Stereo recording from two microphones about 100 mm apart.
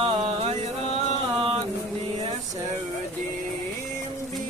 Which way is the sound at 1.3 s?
75° right (ahead or behind).